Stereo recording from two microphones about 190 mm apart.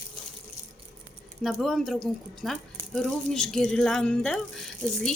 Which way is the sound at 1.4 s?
Centre (ahead or behind).